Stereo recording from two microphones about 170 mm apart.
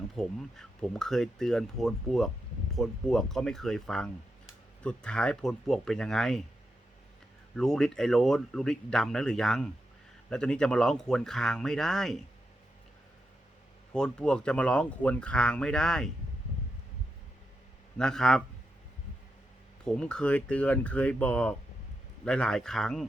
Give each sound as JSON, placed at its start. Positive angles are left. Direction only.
{"t": 0.2, "sound": "speech", "side_deg": 5}
{"t": 7.5, "sound": "speech", "side_deg": 5}
{"t": 13.9, "sound": "speech", "side_deg": 5}
{"t": 17.9, "sound": "speech", "side_deg": 5}
{"t": 19.8, "sound": "speech", "side_deg": 5}